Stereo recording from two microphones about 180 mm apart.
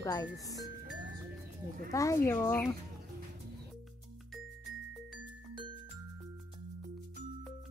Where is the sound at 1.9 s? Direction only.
15° left (ahead or behind).